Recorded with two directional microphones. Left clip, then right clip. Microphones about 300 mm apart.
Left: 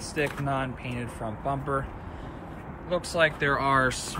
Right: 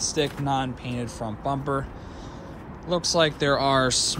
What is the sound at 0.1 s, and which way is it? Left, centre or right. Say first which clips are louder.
Speech: even; right.